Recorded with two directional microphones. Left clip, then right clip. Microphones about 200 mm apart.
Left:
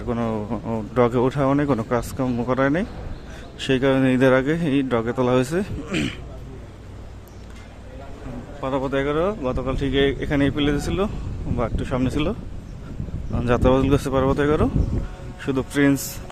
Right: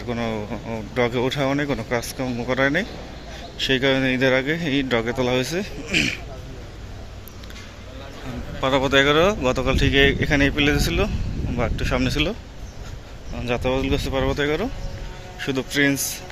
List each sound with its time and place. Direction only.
0.1 s a man's voice: 15° left (ahead or behind)
8.6 s speech: centre (ahead or behind); by 12.4 s 15° left (ahead or behind)
13.4 s a man's voice: 30° left (ahead or behind)